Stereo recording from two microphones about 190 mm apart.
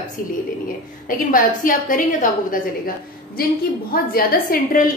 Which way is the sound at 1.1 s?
45° left (ahead or behind).